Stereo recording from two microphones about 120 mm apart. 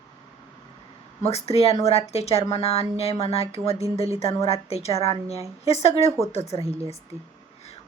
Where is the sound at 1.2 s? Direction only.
60° left (ahead or behind).